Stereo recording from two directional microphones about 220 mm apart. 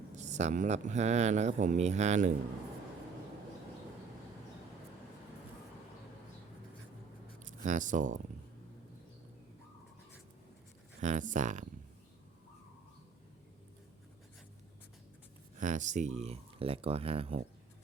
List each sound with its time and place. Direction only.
0.1 s speech: 30° right (ahead or behind)
7.6 s speech: 35° right (ahead or behind)
11.0 s speech: 35° right (ahead or behind)
15.5 s speech: 35° right (ahead or behind)